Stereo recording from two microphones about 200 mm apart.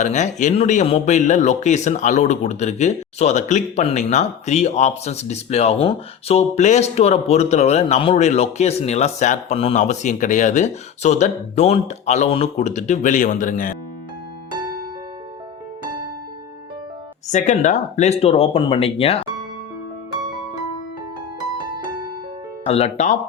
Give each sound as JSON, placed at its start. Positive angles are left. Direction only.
{"t": 0.0, "sound": "speech", "side_deg": 35}
{"t": 17.3, "sound": "speech", "side_deg": 40}
{"t": 22.6, "sound": "speech", "side_deg": 30}